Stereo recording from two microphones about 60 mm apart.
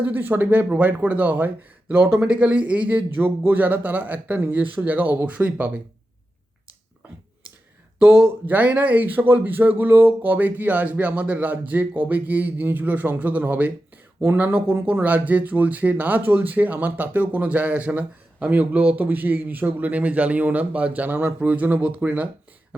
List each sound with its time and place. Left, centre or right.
0.0 s speech: right
2.2 s speech: right
8.4 s speech: right